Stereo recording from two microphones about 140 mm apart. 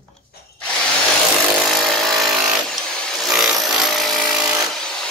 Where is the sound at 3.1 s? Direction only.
5° right (ahead or behind).